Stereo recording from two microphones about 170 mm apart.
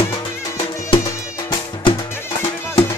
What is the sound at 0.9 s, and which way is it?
Music, 20° left (ahead or behind).